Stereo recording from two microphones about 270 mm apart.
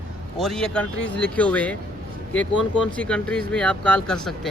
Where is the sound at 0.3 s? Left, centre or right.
Centre.